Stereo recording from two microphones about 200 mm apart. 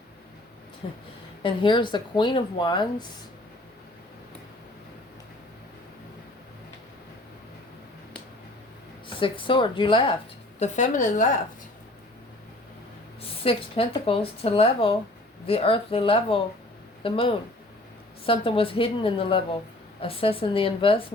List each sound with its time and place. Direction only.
0.8 s speech: 30° left (ahead or behind)
9.0 s speech: 25° left (ahead or behind)
10.6 s a woman's voice: 40° left (ahead or behind)
13.2 s speech: 30° left (ahead or behind)